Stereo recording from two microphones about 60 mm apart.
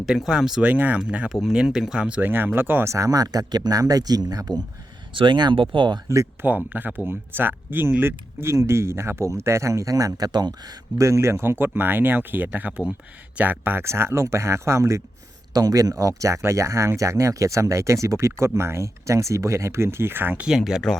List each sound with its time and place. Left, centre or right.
0.0 s speech: centre
0.6 s speech: right
1.3 s speech: centre
2.0 s speech: right
2.3 s speech: right
2.8 s speech: right
6.1 s speech: right
6.7 s speech: right
10.7 s speech: right
11.6 s speech: right
13.8 s speech: right
15.5 s speech: right
20.5 s speech: centre